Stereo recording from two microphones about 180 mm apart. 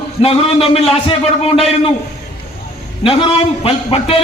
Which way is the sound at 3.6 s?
30° left (ahead or behind).